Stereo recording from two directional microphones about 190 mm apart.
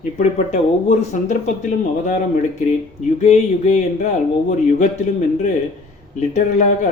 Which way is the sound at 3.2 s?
35° left (ahead or behind).